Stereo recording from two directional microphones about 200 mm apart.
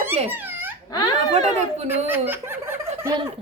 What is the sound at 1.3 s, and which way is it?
Speech, 35° right (ahead or behind).